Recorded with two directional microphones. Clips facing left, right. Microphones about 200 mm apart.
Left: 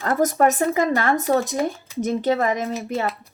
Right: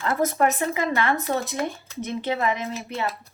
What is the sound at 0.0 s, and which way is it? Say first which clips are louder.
Speech: left 4 dB; 40° left (ahead or behind).